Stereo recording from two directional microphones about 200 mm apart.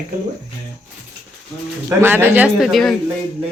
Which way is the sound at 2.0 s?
10° right (ahead or behind).